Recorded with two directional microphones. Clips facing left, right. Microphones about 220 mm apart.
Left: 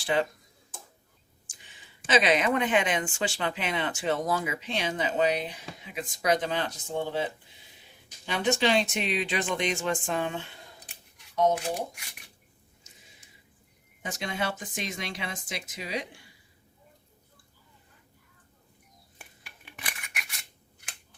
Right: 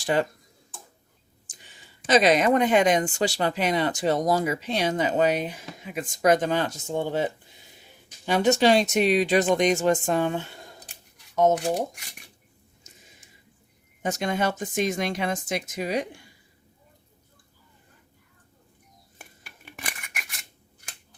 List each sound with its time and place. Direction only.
0.0 s speech: 45° right (ahead or behind)
1.5 s speech: 40° right (ahead or behind)
8.3 s speech: 40° right (ahead or behind)
14.0 s speech: 45° right (ahead or behind)
19.2 s scissors: 45° right (ahead or behind)